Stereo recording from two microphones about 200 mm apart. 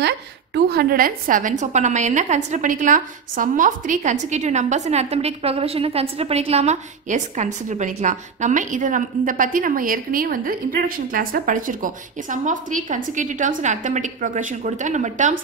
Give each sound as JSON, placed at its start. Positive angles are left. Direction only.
{"t": 0.7, "sound": "a woman's voice", "side_deg": -50}